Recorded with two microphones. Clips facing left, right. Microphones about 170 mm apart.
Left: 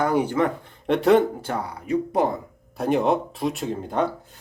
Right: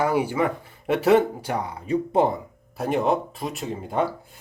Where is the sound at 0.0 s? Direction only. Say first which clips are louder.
Left 1 dB; 10° right (ahead or behind); by 2.3 s 25° right (ahead or behind).